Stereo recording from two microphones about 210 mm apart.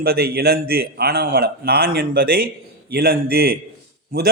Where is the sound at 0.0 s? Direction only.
50° right (ahead or behind).